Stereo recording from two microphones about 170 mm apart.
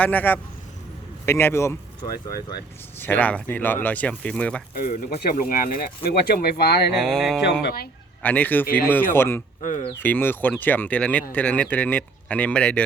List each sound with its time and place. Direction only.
0.0 s speech: 10° left (ahead or behind)
3.0 s speech: 10° left (ahead or behind)
4.7 s speech: 55° left (ahead or behind)
7.0 s a sound: centre (ahead or behind)
7.6 s speech: 65° left (ahead or behind)
8.2 s speech: 10° left (ahead or behind)
9.6 s speech: 50° left (ahead or behind)
10.0 s speech: 10° left (ahead or behind)